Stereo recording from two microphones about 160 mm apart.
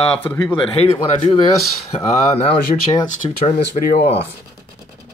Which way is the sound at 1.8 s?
40° left (ahead or behind).